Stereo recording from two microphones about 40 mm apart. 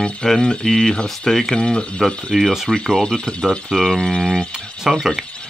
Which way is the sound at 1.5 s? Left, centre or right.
Left.